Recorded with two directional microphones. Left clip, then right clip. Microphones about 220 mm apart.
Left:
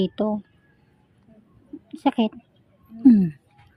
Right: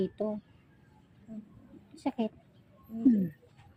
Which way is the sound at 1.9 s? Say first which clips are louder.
Left 12 dB; 55° left (ahead or behind).